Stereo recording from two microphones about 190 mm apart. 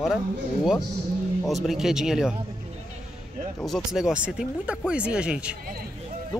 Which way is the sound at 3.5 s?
Centre (ahead or behind).